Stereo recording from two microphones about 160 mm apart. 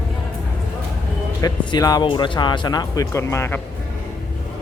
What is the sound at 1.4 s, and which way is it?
Speech, 20° left (ahead or behind).